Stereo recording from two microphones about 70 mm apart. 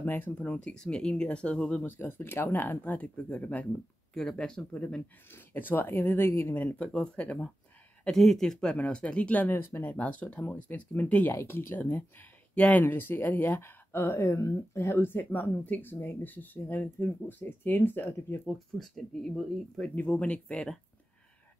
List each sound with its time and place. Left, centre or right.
0.0 s speech: left
1.9 s speech: left
4.1 s speech: centre
5.3 s speech: left
6.8 s speech: centre
8.2 s speech: centre; by 11.3 s left
11.3 s speech: left
18.5 s speech: centre
20.0 s speech: centre